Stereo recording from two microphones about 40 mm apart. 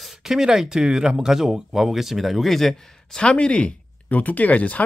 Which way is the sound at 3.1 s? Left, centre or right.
Left.